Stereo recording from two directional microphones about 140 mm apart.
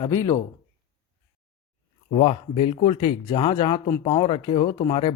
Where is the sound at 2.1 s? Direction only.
45° left (ahead or behind).